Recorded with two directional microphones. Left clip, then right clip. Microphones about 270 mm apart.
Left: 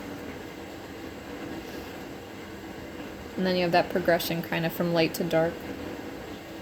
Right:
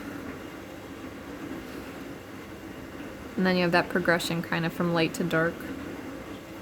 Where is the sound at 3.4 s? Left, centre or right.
Right.